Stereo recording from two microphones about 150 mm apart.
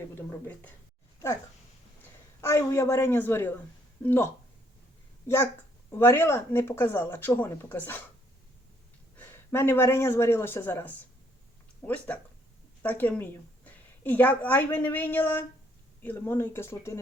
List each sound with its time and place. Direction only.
0.2 s speech: 15° left (ahead or behind)
2.4 s speech: 20° left (ahead or behind)
9.1 s a woman's voice: 15° left (ahead or behind)